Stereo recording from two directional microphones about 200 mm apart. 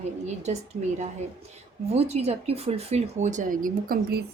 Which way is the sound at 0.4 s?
35° right (ahead or behind).